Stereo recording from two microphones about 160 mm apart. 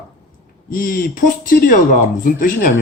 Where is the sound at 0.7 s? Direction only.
60° left (ahead or behind).